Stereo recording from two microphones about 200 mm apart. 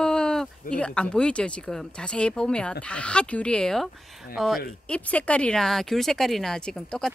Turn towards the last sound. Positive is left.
turn(degrees=5)  # may be behind; listen again after turning